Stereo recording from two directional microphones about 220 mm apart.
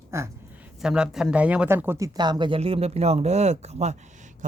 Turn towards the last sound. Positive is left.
turn(degrees=-30)  # may be behind; listen again after turning